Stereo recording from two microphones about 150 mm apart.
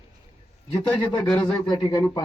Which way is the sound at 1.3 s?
25° left (ahead or behind).